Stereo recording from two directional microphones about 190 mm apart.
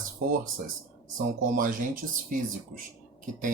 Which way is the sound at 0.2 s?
50° right (ahead or behind).